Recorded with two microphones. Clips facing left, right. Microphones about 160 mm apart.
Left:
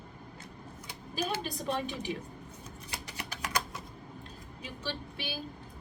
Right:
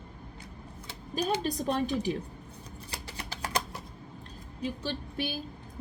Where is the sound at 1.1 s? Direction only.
40° right (ahead or behind).